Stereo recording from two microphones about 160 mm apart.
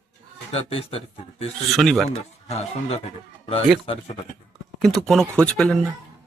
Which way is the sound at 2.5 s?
40° left (ahead or behind).